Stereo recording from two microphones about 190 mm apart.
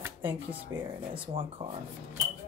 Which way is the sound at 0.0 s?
10° right (ahead or behind).